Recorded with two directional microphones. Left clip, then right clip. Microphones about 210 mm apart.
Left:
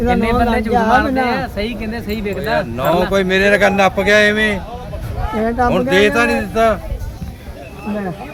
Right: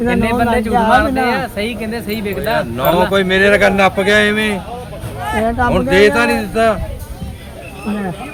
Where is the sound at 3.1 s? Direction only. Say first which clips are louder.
Right 2 dB; 10° left (ahead or behind).